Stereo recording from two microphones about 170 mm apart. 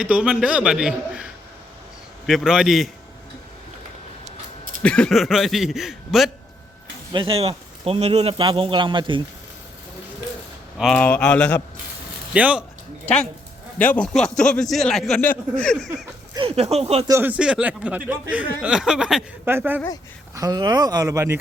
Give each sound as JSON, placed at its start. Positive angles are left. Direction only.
{"t": 0.0, "sound": "a man's voice", "side_deg": -5}
{"t": 4.8, "sound": "a man's voice", "side_deg": 5}
{"t": 7.1, "sound": "a man's voice", "side_deg": -30}
{"t": 10.8, "sound": "a man's voice", "side_deg": 5}
{"t": 12.3, "sound": "speech", "side_deg": -5}
{"t": 13.7, "sound": "a man's voice", "side_deg": 10}
{"t": 16.3, "sound": "a man's voice", "side_deg": -30}
{"t": 17.1, "sound": "speech", "side_deg": -10}
{"t": 20.3, "sound": "speech", "side_deg": -20}